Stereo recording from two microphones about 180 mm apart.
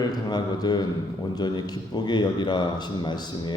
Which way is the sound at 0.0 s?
20° left (ahead or behind).